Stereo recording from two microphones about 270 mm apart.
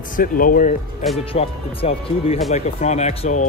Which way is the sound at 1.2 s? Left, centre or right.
Left.